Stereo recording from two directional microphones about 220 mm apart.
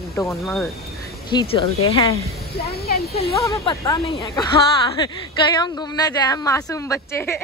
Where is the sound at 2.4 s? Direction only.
45° left (ahead or behind).